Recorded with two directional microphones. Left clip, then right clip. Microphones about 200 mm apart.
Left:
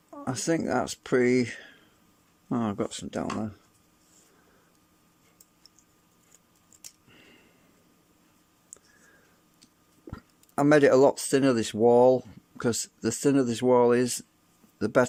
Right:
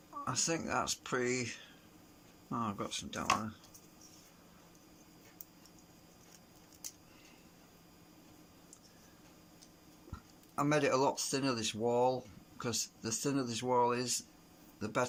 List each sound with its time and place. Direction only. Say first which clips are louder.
0.3 s speech: left 8 dB; 40° left (ahead or behind)
10.1 s speech: left 10 dB; 45° left (ahead or behind)